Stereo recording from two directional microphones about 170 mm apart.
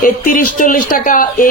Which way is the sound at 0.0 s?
55° left (ahead or behind).